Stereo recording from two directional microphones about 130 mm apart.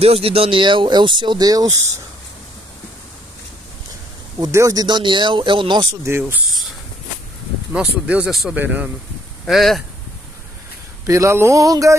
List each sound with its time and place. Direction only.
0.0 s speech: 50° right (ahead or behind); by 2.0 s 25° right (ahead or behind)
4.4 s speech: 25° right (ahead or behind)
6.0 s a sound: 20° right (ahead or behind)
7.7 s speech: 5° right (ahead or behind)
9.5 s speech: centre (ahead or behind)
11.1 s a sound: 20° right (ahead or behind)